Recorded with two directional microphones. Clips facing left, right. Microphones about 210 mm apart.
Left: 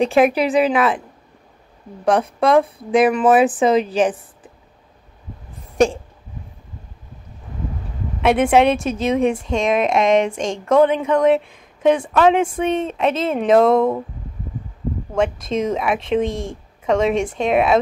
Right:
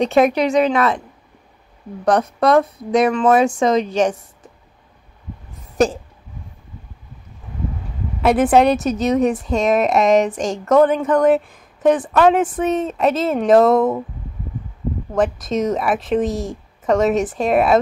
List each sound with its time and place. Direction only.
0.0 s speech: 5° left (ahead or behind)
2.4 s speech: centre (ahead or behind)
8.2 s speech: centre (ahead or behind)
15.4 s speech: 5° right (ahead or behind)
16.3 s a woman's voice: 25° left (ahead or behind)
16.8 s speech: 5° right (ahead or behind)